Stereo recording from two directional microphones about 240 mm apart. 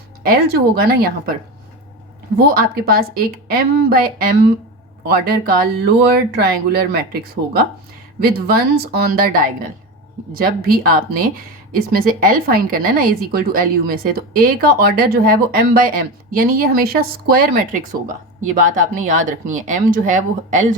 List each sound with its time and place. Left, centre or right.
0.8 s a woman's voice: right
2.6 s a woman's voice: right